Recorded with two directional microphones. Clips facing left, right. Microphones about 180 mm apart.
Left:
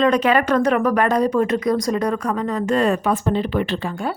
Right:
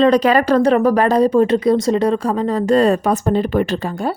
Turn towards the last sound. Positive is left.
turn(degrees=-40)  # may be behind; listen again after turning